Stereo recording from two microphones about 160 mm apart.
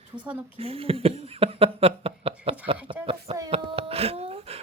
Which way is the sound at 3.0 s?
40° right (ahead or behind).